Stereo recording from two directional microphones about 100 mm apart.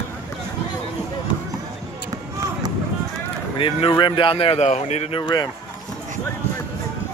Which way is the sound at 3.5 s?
60° left (ahead or behind).